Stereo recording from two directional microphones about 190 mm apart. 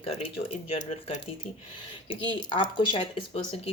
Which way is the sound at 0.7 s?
30° left (ahead or behind).